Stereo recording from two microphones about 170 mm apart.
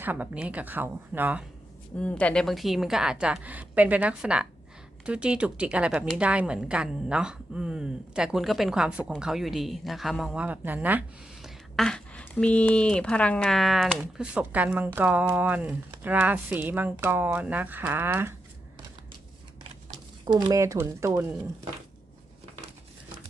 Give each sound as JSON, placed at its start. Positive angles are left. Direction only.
{"t": 0.0, "sound": "speech", "side_deg": -10}
{"t": 2.0, "sound": "a woman's voice", "side_deg": 5}
{"t": 11.4, "sound": "speech", "side_deg": 5}
{"t": 20.2, "sound": "speech", "side_deg": -20}